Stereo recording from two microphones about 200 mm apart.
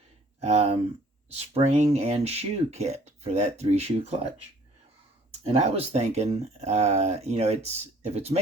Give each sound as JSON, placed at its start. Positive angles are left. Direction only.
{"t": 0.3, "sound": "speech", "side_deg": -30}
{"t": 5.4, "sound": "speech", "side_deg": -30}